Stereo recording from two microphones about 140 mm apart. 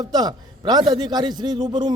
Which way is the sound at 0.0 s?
30° right (ahead or behind).